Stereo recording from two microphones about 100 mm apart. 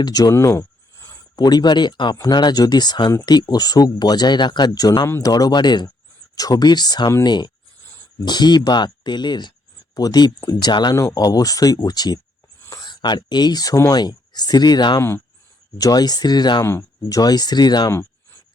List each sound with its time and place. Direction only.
0.0 s speech: 40° left (ahead or behind)
0.3 s a sound: 30° left (ahead or behind)
1.4 s speech: 45° left (ahead or behind)
16.6 s speech: 25° left (ahead or behind)
17.2 s speech: 40° left (ahead or behind)